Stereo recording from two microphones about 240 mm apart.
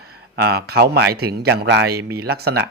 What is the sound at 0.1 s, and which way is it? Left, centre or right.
A man's voice, right.